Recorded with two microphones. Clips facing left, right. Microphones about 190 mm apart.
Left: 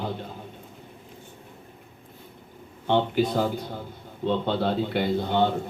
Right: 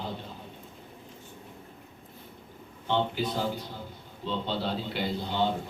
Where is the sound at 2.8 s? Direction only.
50° left (ahead or behind).